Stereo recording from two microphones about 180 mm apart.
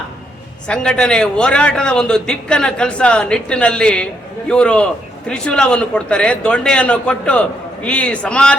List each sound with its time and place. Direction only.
0.7 s a man's voice: 5° left (ahead or behind)